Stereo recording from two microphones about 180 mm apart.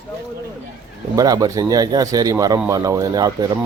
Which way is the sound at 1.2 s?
20° right (ahead or behind).